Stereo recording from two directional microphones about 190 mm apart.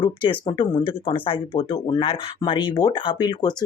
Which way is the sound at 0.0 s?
25° left (ahead or behind).